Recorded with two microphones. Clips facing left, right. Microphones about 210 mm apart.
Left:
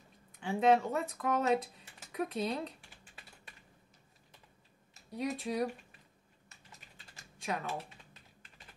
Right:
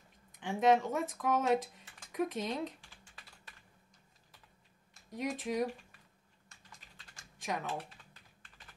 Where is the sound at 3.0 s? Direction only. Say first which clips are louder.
Left 2 dB; 20° left (ahead or behind).